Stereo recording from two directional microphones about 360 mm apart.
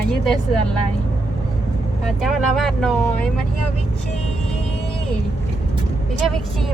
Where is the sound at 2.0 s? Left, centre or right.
Centre.